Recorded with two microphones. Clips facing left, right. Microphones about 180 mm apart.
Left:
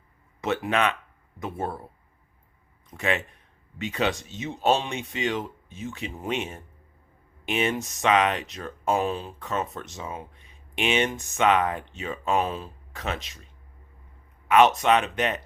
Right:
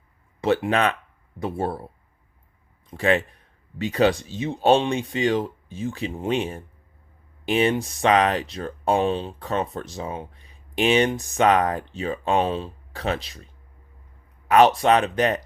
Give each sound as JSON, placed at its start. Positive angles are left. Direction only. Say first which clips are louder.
{"t": 0.4, "sound": "speech", "louder": "right 4 dB", "side_deg": -30}
{"t": 2.9, "sound": "speech", "louder": "right 6 dB", "side_deg": -35}